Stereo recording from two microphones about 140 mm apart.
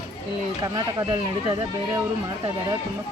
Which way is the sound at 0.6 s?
30° right (ahead or behind).